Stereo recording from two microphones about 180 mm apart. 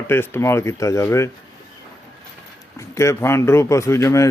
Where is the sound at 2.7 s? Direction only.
15° left (ahead or behind).